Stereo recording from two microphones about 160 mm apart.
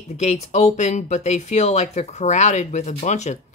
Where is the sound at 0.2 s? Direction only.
45° left (ahead or behind).